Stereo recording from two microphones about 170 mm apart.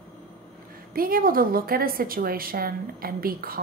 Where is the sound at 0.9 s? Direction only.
55° right (ahead or behind).